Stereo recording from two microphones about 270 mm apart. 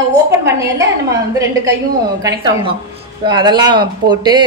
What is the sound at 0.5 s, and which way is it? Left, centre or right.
Speech, centre.